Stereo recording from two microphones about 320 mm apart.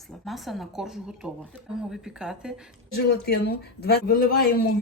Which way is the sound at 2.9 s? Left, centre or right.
Left.